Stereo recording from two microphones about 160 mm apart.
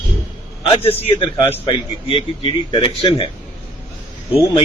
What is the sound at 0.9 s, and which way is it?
A man's voice, 40° left (ahead or behind).